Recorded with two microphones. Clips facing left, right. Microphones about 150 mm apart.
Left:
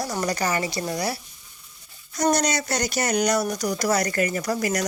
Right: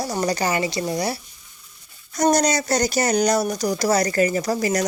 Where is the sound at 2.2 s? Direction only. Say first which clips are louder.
Right 4 dB; 40° right (ahead or behind).